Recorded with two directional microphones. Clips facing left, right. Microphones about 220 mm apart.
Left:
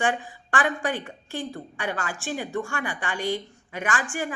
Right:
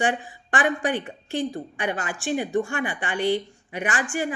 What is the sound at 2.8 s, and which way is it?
Speech, 40° left (ahead or behind).